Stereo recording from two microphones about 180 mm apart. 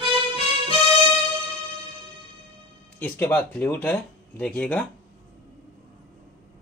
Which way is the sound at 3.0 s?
10° left (ahead or behind).